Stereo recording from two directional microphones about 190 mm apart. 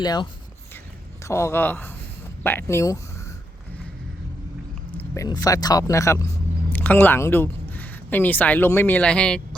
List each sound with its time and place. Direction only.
0.0 s speech: 20° left (ahead or behind)
4.9 s speech: 10° left (ahead or behind)